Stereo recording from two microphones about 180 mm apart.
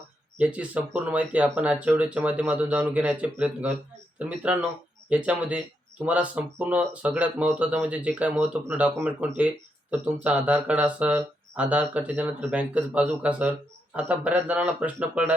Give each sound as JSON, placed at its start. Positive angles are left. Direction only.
{"t": 0.3, "sound": "speech", "side_deg": -5}